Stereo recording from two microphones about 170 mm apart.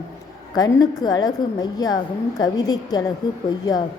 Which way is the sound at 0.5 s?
20° left (ahead or behind).